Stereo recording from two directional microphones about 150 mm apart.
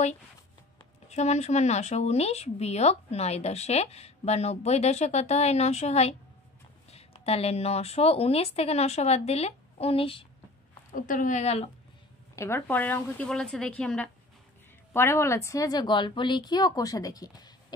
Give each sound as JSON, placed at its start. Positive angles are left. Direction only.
{"t": 1.0, "sound": "speech", "side_deg": 50}
{"t": 11.0, "sound": "a woman's voice", "side_deg": 60}
{"t": 12.4, "sound": "a woman's voice", "side_deg": 15}